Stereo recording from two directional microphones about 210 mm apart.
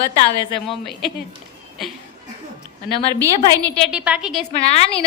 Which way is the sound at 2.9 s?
25° left (ahead or behind).